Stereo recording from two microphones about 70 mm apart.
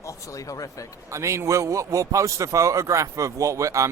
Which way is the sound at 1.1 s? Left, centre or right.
Right.